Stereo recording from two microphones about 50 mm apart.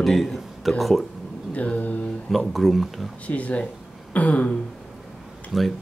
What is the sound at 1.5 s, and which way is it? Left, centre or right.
Mantra, left.